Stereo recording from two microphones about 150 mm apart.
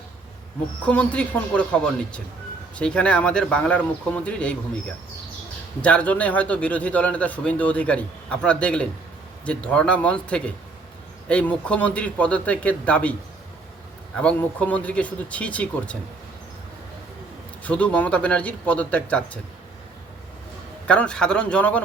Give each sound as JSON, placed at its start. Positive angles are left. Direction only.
{"t": 0.9, "sound": "a man's voice", "side_deg": 10}
{"t": 5.8, "sound": "a man's voice", "side_deg": 10}
{"t": 14.2, "sound": "a man's voice", "side_deg": 10}
{"t": 17.6, "sound": "a man's voice", "side_deg": 10}
{"t": 20.8, "sound": "a man's voice", "side_deg": 5}